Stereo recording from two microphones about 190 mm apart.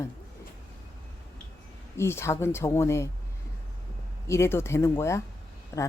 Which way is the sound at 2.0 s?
15° left (ahead or behind).